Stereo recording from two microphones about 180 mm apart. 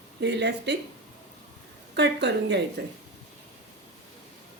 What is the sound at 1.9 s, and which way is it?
Speech, 70° right (ahead or behind).